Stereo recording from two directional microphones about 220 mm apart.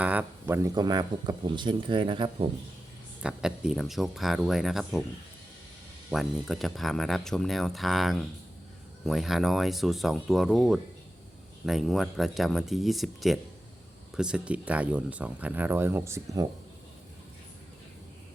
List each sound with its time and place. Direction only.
0.0 s speech: 5° right (ahead or behind); by 2.5 s 25° right (ahead or behind)
3.2 s speech: 5° right (ahead or behind)
6.1 s speech: centre (ahead or behind)